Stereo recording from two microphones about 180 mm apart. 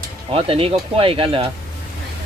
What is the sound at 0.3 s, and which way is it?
Speech, 30° right (ahead or behind).